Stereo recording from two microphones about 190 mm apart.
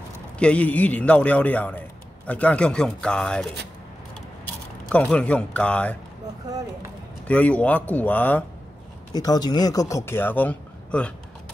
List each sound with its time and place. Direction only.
0.4 s a man's voice: 5° left (ahead or behind)
4.9 s a man's voice: 5° left (ahead or behind)
7.2 s a man's voice: 5° left (ahead or behind)
9.1 s a man's voice: 20° left (ahead or behind)